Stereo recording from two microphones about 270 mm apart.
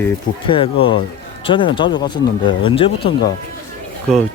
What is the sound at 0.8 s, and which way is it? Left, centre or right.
Speech, centre.